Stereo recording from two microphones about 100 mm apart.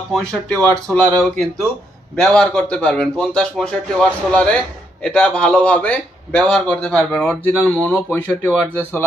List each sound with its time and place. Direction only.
0.1 s a man's voice: 10° left (ahead or behind)
8.1 s speech: 20° left (ahead or behind)